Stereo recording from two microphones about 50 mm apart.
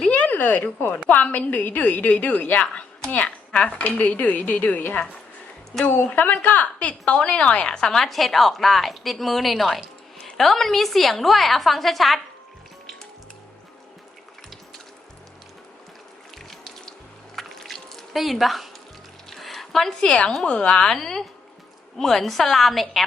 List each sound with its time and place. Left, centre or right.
0.1 s a sound: left
1.0 s a woman's voice: left
4.8 s a woman's voice: left
6.1 s a woman's voice: left; by 12.2 s centre
16.5 s water: centre
17.3 s drip: centre
19.3 s music: centre
20.0 s a woman's voice: left; by 23.0 s centre